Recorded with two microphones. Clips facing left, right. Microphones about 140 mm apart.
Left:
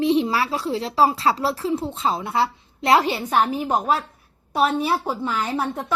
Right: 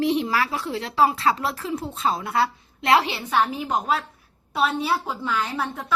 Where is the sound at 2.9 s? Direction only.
45° left (ahead or behind).